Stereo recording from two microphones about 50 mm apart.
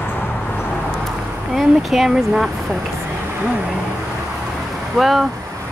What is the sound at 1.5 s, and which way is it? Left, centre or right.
Speech, centre.